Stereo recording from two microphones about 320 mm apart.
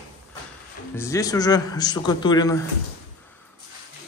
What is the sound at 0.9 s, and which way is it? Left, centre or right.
Speech, centre.